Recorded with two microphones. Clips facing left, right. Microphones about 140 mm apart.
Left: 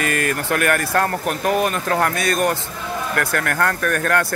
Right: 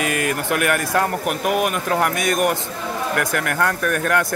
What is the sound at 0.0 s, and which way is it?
Speech, 15° right (ahead or behind).